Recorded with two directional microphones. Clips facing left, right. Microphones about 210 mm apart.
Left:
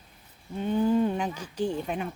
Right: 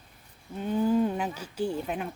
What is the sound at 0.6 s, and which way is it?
Speech, 5° right (ahead or behind).